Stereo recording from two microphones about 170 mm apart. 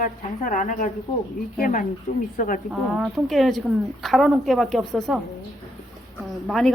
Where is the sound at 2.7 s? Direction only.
Centre (ahead or behind).